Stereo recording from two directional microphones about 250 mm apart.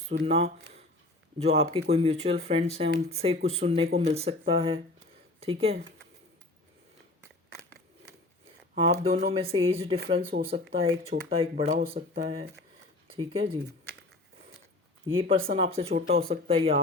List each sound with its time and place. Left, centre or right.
0.1 s speech: right
8.8 s speech: right
11.8 s speech: right
13.1 s speech: right
15.1 s speech: right